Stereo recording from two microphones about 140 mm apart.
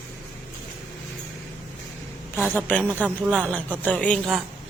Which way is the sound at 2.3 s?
15° left (ahead or behind).